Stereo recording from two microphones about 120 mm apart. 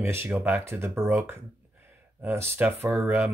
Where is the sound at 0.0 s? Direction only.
20° right (ahead or behind).